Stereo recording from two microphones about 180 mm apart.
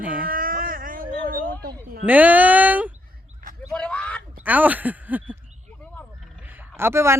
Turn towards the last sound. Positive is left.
turn(degrees=-15)  # may be behind; listen again after turning